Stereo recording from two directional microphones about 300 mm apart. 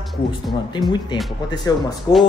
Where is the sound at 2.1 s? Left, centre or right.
Centre.